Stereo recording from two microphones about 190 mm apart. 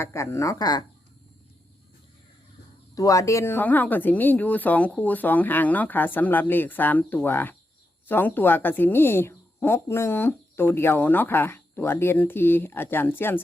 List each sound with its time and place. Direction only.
0.0 s a woman's voice: 15° left (ahead or behind)
2.9 s a woman's voice: 15° left (ahead or behind)